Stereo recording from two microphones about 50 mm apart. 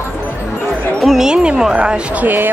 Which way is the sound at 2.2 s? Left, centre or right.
Right.